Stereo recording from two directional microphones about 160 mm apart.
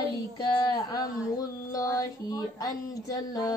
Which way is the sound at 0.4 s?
25° left (ahead or behind).